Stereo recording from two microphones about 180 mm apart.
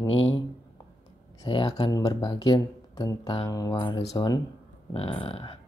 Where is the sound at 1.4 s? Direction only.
25° left (ahead or behind).